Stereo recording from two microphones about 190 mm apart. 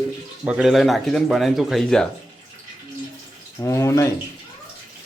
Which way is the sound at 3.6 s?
15° left (ahead or behind).